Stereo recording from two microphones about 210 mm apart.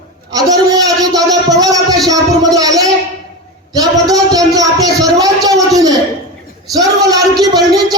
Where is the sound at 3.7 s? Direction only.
15° right (ahead or behind).